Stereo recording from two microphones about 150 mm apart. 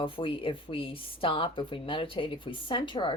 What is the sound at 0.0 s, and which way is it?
A woman's voice, 35° left (ahead or behind).